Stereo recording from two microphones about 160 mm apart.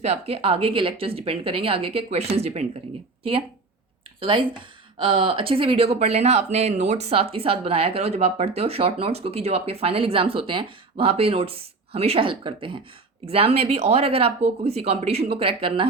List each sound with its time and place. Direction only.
0.0 s speech: 40° right (ahead or behind)
4.2 s speech: 30° right (ahead or behind)